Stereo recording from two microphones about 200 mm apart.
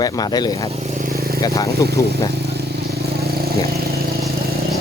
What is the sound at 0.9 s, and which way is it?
Vehicle, 50° right (ahead or behind).